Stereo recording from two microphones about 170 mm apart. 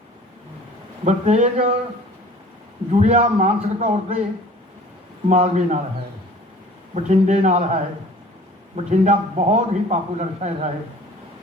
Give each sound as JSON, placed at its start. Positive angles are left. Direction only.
{"t": 1.0, "sound": "a man's voice", "side_deg": -45}
{"t": 3.0, "sound": "a man's voice", "side_deg": -45}
{"t": 5.3, "sound": "a man's voice", "side_deg": -45}
{"t": 6.9, "sound": "a man's voice", "side_deg": -45}